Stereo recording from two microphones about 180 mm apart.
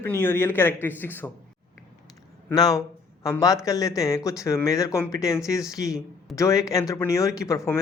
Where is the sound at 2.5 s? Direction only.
20° left (ahead or behind).